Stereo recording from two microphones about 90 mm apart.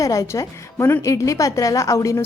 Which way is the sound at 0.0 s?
40° left (ahead or behind).